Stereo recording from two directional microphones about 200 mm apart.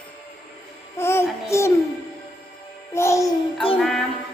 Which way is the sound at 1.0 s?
10° left (ahead or behind).